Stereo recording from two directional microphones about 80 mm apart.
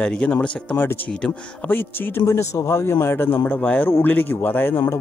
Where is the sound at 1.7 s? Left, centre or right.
Left.